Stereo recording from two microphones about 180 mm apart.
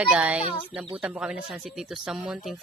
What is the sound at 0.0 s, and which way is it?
Speech, 5° right (ahead or behind).